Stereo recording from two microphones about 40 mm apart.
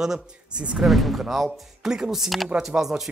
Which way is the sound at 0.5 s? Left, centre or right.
Right.